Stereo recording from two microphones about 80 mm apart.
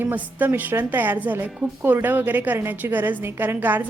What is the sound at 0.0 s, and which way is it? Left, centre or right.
A woman's voice, right.